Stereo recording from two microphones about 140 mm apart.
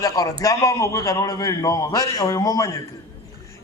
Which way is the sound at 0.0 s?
25° left (ahead or behind).